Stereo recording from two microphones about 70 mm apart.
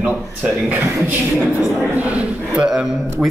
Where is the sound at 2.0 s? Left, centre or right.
Centre.